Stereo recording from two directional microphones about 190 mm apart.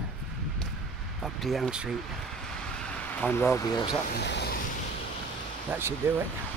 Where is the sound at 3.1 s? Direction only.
10° left (ahead or behind).